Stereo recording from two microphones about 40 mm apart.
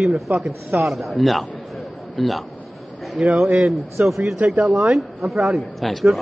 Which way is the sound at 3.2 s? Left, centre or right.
Right.